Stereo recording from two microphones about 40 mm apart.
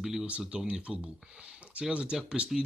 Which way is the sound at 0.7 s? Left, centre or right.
Right.